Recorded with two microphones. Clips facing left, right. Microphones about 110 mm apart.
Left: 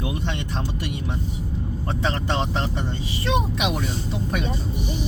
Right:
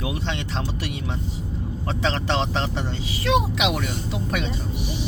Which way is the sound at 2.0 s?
80° right.